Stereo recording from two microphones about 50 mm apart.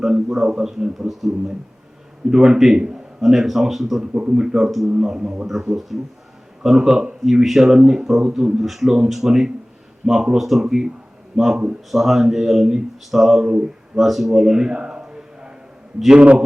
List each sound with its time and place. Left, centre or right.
0.0 s a man's voice: centre
4.0 s speech: right
5.9 s a man's voice: centre
7.3 s a man's voice: centre
13.4 s speech: right
13.9 s speech: centre
15.1 s a sound: centre
16.1 s speech: right